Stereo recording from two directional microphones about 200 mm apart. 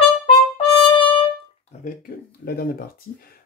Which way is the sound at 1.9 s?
45° left (ahead or behind).